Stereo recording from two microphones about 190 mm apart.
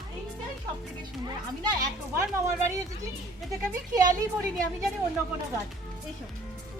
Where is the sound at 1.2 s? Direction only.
20° right (ahead or behind).